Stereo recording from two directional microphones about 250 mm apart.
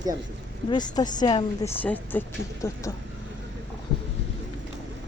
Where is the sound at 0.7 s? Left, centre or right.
Centre.